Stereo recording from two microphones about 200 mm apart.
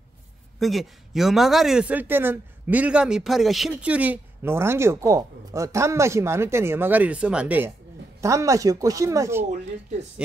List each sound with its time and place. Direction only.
0.6 s a man's voice: centre (ahead or behind)